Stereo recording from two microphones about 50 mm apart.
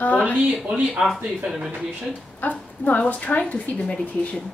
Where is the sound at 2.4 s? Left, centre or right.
Left.